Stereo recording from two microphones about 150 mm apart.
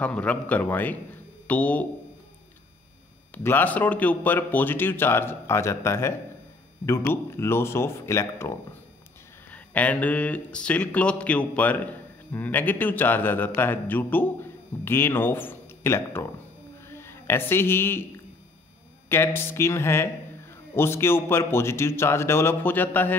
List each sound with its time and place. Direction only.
0.0 s speech: 10° left (ahead or behind)
3.4 s a woman's voice: 10° left (ahead or behind)